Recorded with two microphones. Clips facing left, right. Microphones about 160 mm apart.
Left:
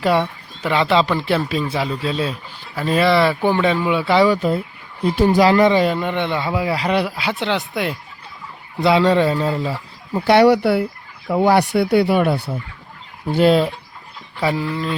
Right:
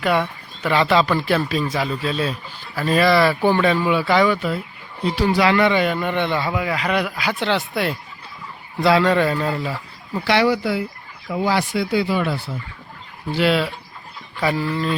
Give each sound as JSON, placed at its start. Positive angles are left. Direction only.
{"t": 0.0, "sound": "speech", "side_deg": 30}
{"t": 0.6, "sound": "speech", "side_deg": 20}
{"t": 5.0, "sound": "a man's voice", "side_deg": 50}
{"t": 6.5, "sound": "a man's voice", "side_deg": 30}
{"t": 8.8, "sound": "speech", "side_deg": 20}
{"t": 10.2, "sound": "speech", "side_deg": 60}
{"t": 13.3, "sound": "speech", "side_deg": 45}
{"t": 14.3, "sound": "speech", "side_deg": 20}